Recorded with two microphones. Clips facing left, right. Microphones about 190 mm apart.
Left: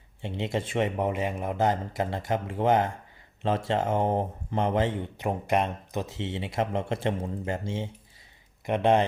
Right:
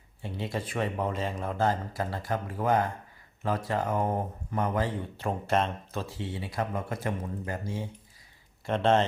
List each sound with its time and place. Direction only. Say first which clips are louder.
0.2 s speech: left 4 dB; 20° left (ahead or behind)